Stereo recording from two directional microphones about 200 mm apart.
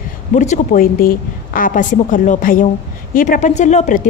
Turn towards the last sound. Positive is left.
turn(degrees=35)  # may be behind; listen again after turning